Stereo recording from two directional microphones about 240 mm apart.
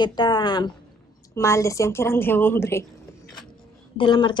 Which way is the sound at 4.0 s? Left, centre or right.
Centre.